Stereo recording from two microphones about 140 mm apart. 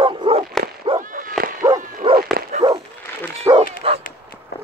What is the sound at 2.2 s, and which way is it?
Dog, 90° right.